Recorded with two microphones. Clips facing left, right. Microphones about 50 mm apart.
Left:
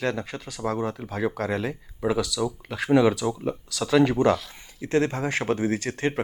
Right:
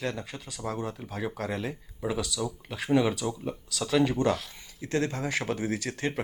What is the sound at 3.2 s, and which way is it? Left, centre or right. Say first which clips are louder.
Speech: left 5 dB; left.